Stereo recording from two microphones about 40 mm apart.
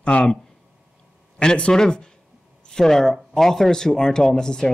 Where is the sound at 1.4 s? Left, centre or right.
Left.